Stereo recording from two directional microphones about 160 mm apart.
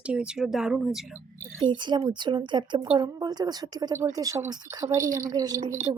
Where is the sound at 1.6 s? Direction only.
30° right (ahead or behind).